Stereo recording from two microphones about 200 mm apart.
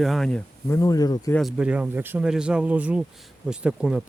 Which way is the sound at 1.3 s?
5° right (ahead or behind).